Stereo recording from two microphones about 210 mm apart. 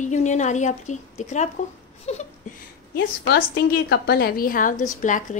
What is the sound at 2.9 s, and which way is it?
A woman's voice, 45° left (ahead or behind).